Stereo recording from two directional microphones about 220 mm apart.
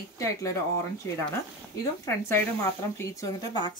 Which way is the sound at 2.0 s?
10° left (ahead or behind).